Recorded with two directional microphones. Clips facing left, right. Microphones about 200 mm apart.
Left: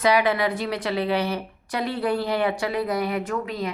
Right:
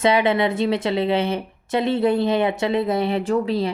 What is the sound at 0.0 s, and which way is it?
Speech, 25° right (ahead or behind).